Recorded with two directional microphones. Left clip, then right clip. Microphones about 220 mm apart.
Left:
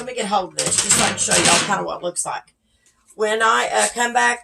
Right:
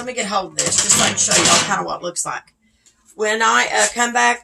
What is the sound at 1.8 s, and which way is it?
A woman's voice, 30° right (ahead or behind).